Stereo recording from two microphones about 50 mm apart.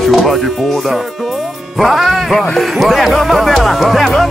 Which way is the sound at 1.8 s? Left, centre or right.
Centre.